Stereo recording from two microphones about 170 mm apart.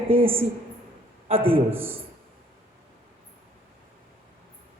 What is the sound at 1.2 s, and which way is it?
Speech, 35° right (ahead or behind).